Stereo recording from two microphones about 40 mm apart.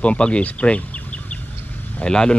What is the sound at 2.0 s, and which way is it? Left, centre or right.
Speech, centre.